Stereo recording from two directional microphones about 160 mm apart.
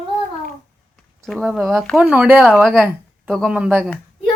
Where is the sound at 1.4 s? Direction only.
10° right (ahead or behind).